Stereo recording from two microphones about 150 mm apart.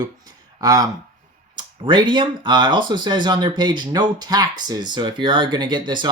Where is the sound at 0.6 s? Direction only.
25° right (ahead or behind).